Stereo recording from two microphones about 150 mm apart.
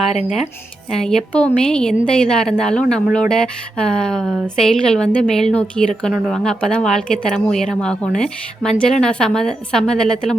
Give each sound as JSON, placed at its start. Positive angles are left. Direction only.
{"t": 0.9, "sound": "speech", "side_deg": 5}